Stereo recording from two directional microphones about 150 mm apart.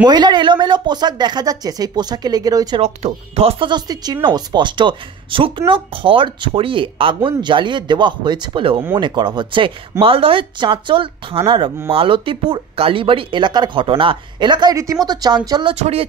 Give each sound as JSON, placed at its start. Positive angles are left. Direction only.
{"t": 0.0, "sound": "speech", "side_deg": -30}
{"t": 2.8, "sound": "speech", "side_deg": -45}
{"t": 15.7, "sound": "speech", "side_deg": -45}